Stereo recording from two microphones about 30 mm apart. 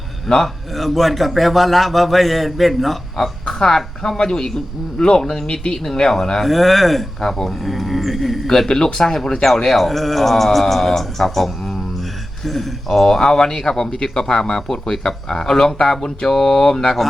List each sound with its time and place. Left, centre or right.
0.4 s a man's voice: centre
3.4 s a woman's voice: centre
7.2 s speech: centre
7.6 s a man's voice: centre
8.6 s a man's voice: left; by 12.7 s centre
12.9 s a man's voice: centre